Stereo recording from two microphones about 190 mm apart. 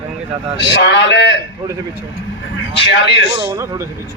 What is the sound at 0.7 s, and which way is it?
Speech, 70° left (ahead or behind).